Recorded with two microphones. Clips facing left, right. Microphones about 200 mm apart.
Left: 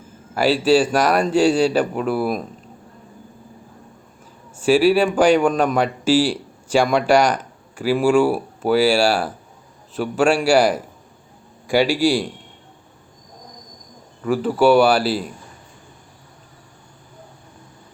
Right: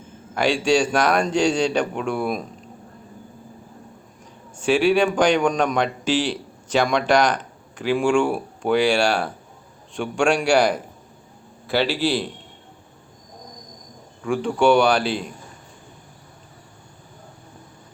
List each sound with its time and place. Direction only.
0.3 s speech: 5° left (ahead or behind)
4.5 s a man's voice: 5° left (ahead or behind)
14.3 s speech: 5° left (ahead or behind)